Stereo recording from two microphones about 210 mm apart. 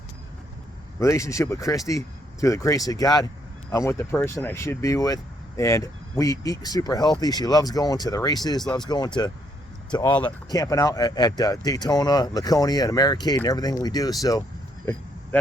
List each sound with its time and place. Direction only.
0.9 s speech: 15° left (ahead or behind)
9.9 s speech: 20° left (ahead or behind)